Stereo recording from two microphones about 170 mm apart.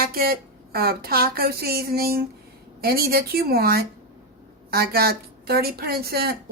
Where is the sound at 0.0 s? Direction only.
60° right (ahead or behind).